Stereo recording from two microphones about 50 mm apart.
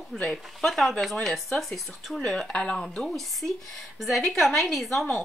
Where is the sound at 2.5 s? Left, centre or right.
Centre.